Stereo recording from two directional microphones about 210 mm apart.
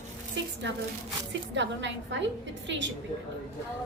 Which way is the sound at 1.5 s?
60° right (ahead or behind).